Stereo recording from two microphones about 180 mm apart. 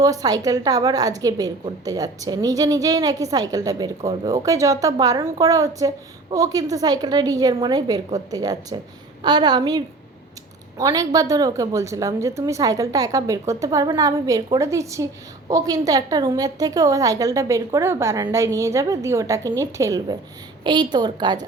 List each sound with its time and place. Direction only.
0.0 s a woman's voice: 20° right (ahead or behind)